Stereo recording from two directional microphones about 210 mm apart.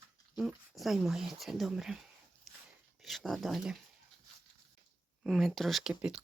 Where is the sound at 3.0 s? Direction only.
Centre (ahead or behind).